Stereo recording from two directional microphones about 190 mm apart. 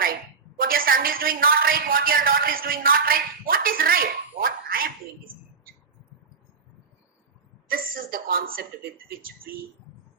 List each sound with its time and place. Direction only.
0.6 s a woman's voice: 50° right (ahead or behind)
7.7 s speech: 50° right (ahead or behind)